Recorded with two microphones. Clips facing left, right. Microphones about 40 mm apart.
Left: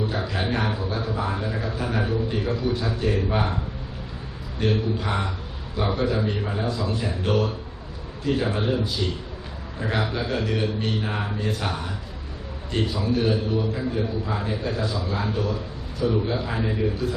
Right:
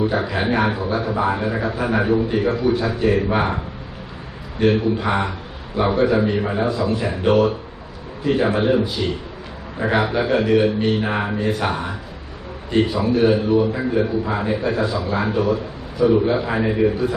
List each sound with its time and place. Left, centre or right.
0.1 s a man's voice: right
4.6 s a man's voice: right
8.5 s a man's voice: right